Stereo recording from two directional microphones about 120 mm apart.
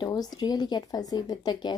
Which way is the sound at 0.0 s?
35° left (ahead or behind).